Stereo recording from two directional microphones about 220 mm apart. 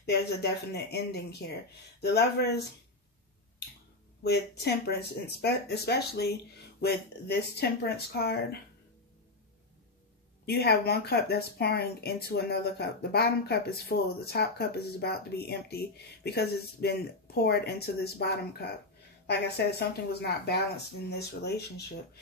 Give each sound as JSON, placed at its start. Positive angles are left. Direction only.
{"t": 0.9, "sound": "speech", "side_deg": 45}
{"t": 4.2, "sound": "speech", "side_deg": 50}
{"t": 10.4, "sound": "speech", "side_deg": 45}